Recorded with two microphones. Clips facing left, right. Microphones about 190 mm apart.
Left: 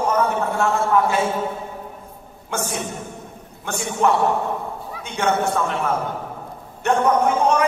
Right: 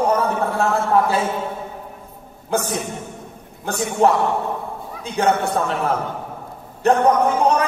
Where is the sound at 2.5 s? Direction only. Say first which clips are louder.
Right 4 dB; 35° right (ahead or behind).